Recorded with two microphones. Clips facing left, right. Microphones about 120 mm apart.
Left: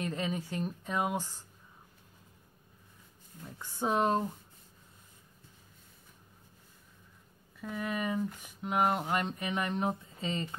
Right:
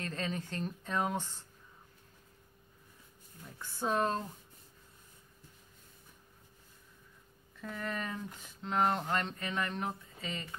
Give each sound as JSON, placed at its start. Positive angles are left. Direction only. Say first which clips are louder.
{"t": 0.0, "sound": "speech", "louder": "left 3 dB", "side_deg": 15}
{"t": 3.5, "sound": "speech", "louder": "left 2 dB", "side_deg": 15}
{"t": 7.6, "sound": "speech", "louder": "left 4 dB", "side_deg": 5}